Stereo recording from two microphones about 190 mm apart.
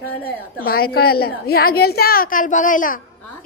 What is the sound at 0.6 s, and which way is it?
A woman's voice, 55° left (ahead or behind).